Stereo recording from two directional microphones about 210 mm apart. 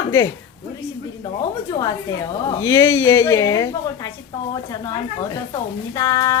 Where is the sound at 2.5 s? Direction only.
15° left (ahead or behind).